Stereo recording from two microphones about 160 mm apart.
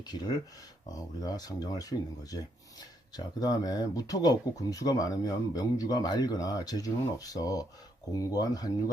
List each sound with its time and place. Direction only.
0.0 s speech: 25° left (ahead or behind)